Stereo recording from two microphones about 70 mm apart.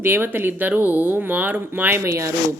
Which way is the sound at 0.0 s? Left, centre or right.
Right.